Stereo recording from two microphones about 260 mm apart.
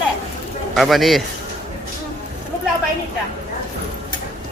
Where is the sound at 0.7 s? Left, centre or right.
Centre.